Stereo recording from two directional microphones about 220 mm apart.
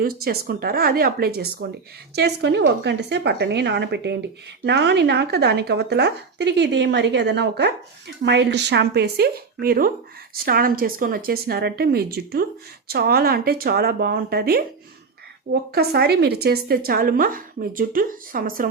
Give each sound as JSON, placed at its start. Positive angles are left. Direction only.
{"t": 0.0, "sound": "speech", "side_deg": -45}
{"t": 15.7, "sound": "a woman's voice", "side_deg": -45}